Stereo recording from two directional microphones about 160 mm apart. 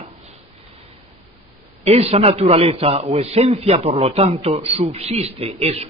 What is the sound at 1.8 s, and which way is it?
A man's voice, 40° right (ahead or behind).